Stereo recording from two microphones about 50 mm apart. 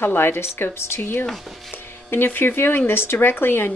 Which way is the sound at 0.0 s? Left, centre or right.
Left.